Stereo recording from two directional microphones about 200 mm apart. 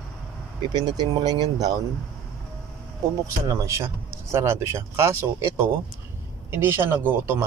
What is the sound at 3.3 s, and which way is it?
A man's voice, 15° right (ahead or behind).